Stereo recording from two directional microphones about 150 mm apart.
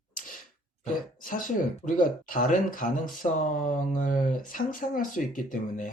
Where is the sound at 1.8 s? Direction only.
60° left (ahead or behind).